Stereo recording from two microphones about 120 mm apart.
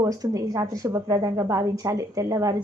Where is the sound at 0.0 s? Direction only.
30° right (ahead or behind).